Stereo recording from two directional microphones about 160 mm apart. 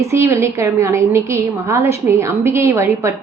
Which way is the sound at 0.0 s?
15° right (ahead or behind).